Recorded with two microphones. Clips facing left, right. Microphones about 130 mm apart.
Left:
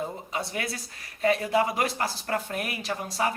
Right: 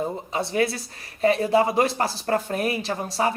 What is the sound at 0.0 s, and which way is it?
Speech, 30° right (ahead or behind).